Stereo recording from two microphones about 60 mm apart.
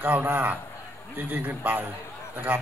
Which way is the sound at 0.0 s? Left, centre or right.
Right.